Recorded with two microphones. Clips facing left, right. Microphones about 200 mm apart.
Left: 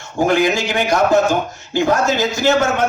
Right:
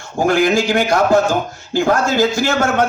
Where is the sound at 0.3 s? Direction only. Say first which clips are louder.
Right 3 dB; 20° left (ahead or behind).